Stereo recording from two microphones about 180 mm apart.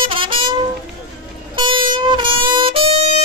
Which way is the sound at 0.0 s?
30° right (ahead or behind).